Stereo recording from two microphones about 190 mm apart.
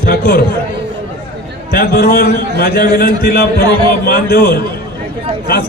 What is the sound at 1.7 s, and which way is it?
A man's voice, 50° left (ahead or behind).